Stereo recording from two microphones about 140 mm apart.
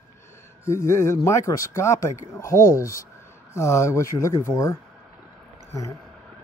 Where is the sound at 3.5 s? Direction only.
20° left (ahead or behind).